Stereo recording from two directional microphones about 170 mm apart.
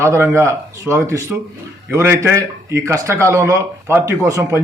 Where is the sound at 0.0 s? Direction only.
15° right (ahead or behind).